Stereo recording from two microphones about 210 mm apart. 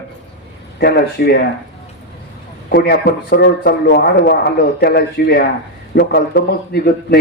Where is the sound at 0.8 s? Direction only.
50° left (ahead or behind).